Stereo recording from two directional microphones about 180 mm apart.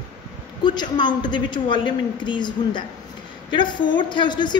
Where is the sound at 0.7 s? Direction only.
25° left (ahead or behind).